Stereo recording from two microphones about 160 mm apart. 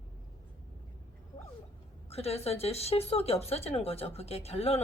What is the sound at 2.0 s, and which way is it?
Speech, 40° left (ahead or behind).